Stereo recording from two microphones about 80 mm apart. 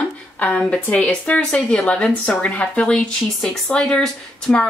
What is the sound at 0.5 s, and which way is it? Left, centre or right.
A woman's voice, centre.